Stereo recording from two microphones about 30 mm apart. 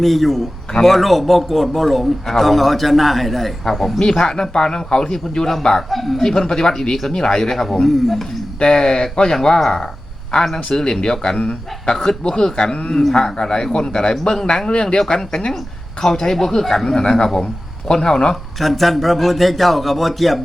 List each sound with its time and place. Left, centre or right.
0.0 s a man's voice: centre
4.2 s a man's voice: centre
5.9 s a man's voice: centre
6.4 s a man's voice: centre
8.5 s a man's voice: left
13.0 s a man's voice: centre
13.2 s a man's voice: centre
14.7 s speech: left
15.1 s a man's voice: left
18.6 s a man's voice: centre